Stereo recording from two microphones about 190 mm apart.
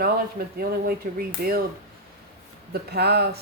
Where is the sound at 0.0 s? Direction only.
50° right (ahead or behind).